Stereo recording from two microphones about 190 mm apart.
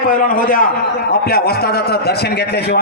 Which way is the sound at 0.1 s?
45° left (ahead or behind).